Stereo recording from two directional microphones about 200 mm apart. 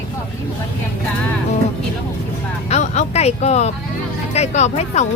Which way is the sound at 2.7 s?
35° left (ahead or behind).